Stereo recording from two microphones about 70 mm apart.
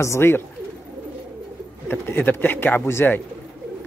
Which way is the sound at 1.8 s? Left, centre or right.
Left.